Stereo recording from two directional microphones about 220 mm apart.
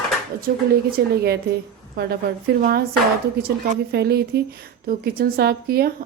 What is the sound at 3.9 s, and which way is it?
Speech, 45° right (ahead or behind).